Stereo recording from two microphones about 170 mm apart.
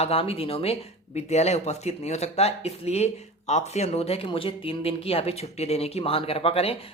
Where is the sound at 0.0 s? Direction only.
35° left (ahead or behind).